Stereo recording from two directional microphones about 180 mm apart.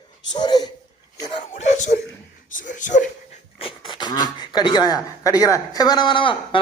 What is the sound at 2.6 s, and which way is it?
Speech, 45° left (ahead or behind).